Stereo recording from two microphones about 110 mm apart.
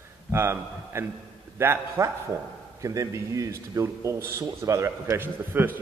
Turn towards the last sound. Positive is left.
turn(degrees=-20)  # may be behind; listen again after turning